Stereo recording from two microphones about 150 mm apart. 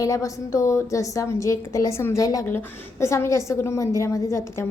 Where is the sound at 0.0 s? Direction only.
20° left (ahead or behind).